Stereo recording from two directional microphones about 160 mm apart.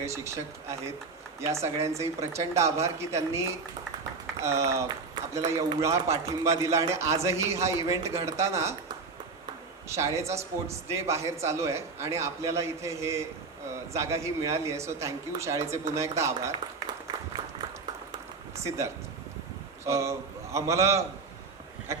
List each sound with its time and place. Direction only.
0.0 s a man's voice: 20° right (ahead or behind)
9.9 s a man's voice: 20° right (ahead or behind)
18.5 s a man's voice: 20° right (ahead or behind)